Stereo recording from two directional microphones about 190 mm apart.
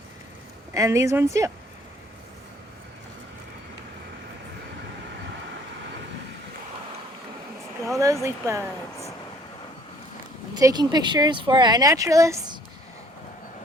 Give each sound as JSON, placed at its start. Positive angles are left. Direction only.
{"t": 0.7, "sound": "speech", "side_deg": -15}
{"t": 7.9, "sound": "speech", "side_deg": -15}
{"t": 10.6, "sound": "speech", "side_deg": -20}